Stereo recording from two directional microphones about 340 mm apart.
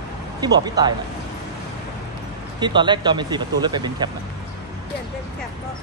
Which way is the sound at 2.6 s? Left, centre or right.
Centre.